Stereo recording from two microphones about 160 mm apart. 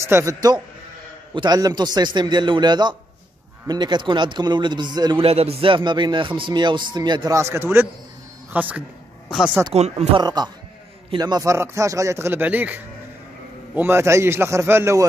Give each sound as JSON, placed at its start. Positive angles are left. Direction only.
{"t": 0.0, "sound": "speech", "side_deg": -20}
{"t": 5.2, "sound": "a man's voice", "side_deg": -40}
{"t": 9.8, "sound": "speech", "side_deg": -40}
{"t": 10.2, "sound": "a man's voice", "side_deg": -25}